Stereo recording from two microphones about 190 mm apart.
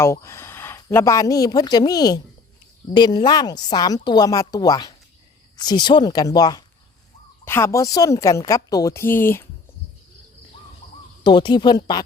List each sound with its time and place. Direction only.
0.0 s a woman's voice: 15° left (ahead or behind)
11.2 s speech: 25° left (ahead or behind)